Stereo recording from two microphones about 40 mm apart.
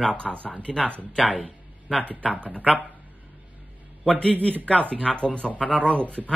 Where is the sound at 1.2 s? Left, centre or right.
Right.